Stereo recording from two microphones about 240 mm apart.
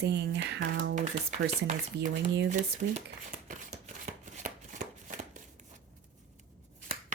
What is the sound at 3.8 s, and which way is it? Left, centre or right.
Chopping, right.